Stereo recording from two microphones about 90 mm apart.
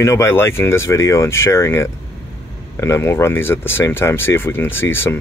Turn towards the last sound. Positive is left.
turn(degrees=25)  # may be behind; listen again after turning